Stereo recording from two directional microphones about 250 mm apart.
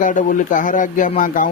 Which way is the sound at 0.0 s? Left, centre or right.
Left.